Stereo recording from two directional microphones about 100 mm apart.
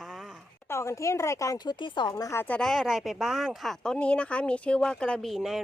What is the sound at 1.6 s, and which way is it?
Speech, 50° left (ahead or behind).